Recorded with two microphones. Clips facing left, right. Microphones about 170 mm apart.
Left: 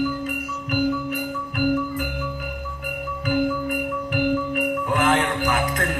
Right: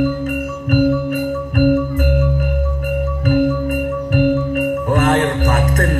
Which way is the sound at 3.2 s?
45° right (ahead or behind).